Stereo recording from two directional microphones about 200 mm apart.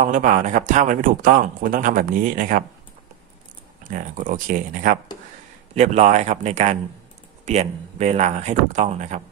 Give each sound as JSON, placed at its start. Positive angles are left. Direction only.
{"t": 0.0, "sound": "speech", "side_deg": -40}
{"t": 3.9, "sound": "speech", "side_deg": -40}